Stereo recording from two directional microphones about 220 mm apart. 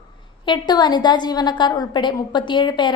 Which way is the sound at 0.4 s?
20° left (ahead or behind).